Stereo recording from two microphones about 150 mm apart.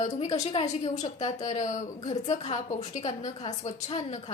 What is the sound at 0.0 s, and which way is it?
A woman's voice, 50° left (ahead or behind).